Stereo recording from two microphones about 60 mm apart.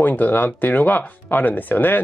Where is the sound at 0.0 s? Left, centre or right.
Left.